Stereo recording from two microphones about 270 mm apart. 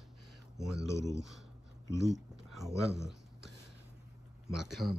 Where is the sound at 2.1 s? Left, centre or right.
Centre.